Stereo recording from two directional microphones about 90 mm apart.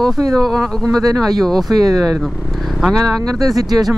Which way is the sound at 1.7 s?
45° right (ahead or behind).